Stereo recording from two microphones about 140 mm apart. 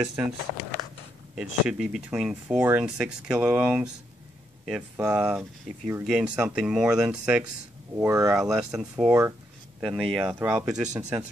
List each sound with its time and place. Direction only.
0.0 s speech: 10° right (ahead or behind)
1.3 s speech: 5° right (ahead or behind)
7.9 s speech: 20° right (ahead or behind)
8.4 s speech: 5° right (ahead or behind)
9.8 s speech: centre (ahead or behind)
10.2 s speech: 15° right (ahead or behind)
10.9 s speech: 25° right (ahead or behind)